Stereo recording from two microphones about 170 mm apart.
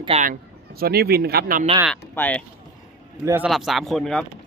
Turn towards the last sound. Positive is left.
turn(degrees=0)  # may be behind; listen again after turning